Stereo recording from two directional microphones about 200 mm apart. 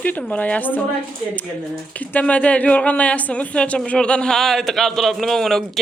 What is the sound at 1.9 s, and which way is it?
A woman's voice, 5° left (ahead or behind).